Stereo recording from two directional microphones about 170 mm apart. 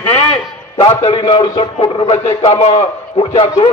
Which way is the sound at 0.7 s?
25° left (ahead or behind).